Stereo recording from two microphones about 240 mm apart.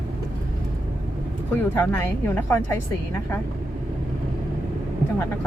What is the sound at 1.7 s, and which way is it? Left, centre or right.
A woman's voice, centre.